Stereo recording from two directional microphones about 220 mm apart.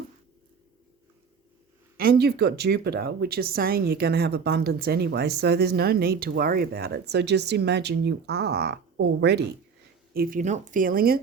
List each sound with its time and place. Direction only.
2.0 s speech: 45° right (ahead or behind)
10.2 s speech: 40° right (ahead or behind)